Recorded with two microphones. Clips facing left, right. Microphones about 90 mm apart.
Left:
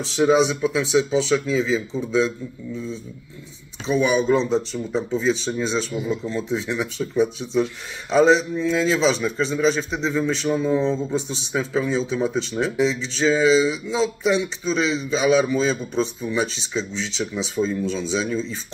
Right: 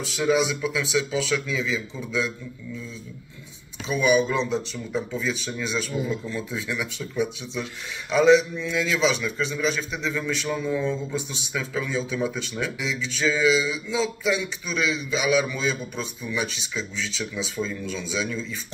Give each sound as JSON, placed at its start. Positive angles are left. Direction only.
{"t": 0.0, "sound": "a man's voice", "side_deg": 30}